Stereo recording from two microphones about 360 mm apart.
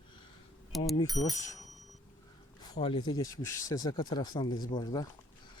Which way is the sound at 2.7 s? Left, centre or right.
Centre.